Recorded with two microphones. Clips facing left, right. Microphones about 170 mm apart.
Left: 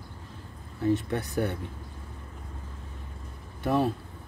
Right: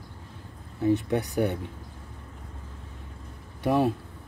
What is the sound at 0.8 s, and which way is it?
Speech, 15° right (ahead or behind).